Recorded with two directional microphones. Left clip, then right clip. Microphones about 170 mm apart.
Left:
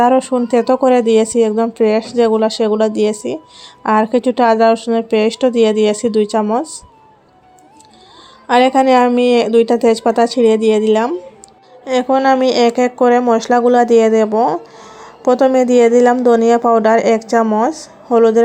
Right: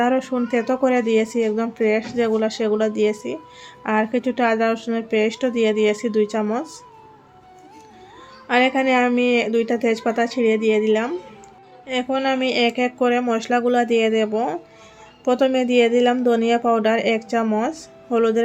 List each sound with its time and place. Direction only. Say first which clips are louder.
0.0 s speech: left 8 dB; 35° left (ahead or behind)
8.4 s speech: left 7 dB; 40° left (ahead or behind)